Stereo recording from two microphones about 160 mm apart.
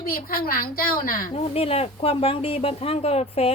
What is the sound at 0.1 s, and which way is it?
A child's voice, 65° left (ahead or behind).